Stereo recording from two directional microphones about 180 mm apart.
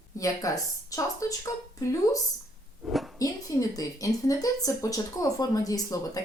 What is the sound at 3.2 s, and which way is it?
A woman's voice, 20° left (ahead or behind).